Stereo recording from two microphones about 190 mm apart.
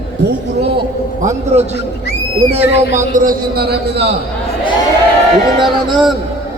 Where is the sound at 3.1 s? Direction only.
45° right (ahead or behind).